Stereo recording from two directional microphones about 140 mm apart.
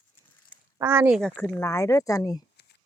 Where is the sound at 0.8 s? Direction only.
15° right (ahead or behind).